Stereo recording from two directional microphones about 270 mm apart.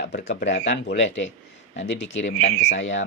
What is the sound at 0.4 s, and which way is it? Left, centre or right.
Speech, left.